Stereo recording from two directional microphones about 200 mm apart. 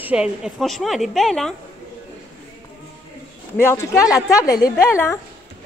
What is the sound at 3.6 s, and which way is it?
A woman's voice, 15° left (ahead or behind).